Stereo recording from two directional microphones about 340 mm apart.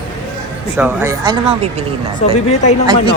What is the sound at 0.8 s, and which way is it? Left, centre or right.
A woman's voice, centre.